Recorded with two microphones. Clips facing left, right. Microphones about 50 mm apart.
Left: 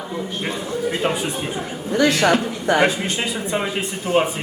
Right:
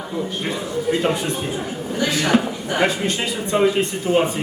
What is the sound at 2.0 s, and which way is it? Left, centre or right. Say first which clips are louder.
Speech: left 5 dB; left.